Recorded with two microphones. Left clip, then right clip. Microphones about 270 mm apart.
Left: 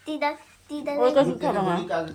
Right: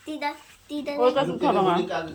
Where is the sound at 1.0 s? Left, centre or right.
Left.